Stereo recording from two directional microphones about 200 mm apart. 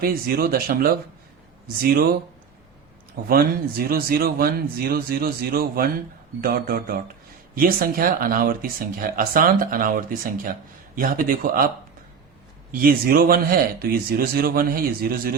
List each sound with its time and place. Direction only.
0.0 s speech: 50° right (ahead or behind)
3.2 s speech: 50° right (ahead or behind)
12.7 s speech: 45° right (ahead or behind)